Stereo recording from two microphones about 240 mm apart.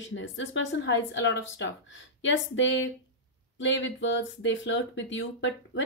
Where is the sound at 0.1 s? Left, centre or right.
Left.